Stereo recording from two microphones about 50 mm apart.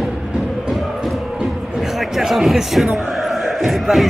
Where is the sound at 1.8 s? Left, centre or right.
Centre.